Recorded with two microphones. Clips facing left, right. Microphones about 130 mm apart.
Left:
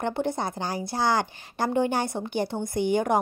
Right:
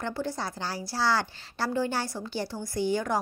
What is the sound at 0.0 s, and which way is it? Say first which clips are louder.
A woman's voice: left 5 dB; 20° left (ahead or behind).